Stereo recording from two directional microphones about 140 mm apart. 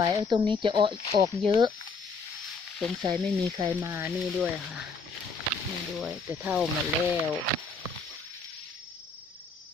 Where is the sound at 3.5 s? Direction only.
35° right (ahead or behind).